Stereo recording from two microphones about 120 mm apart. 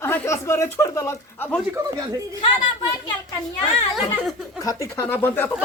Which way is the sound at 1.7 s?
30° right (ahead or behind).